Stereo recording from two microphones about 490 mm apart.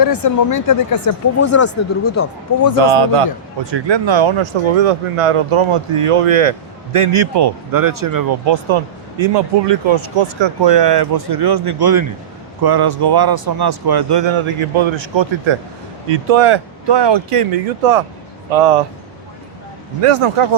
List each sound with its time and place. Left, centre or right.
0.0 s speech: left
1.4 s speech: left
2.8 s speech: right
3.6 s speech: right
8.4 s speech: right
20.0 s speech: right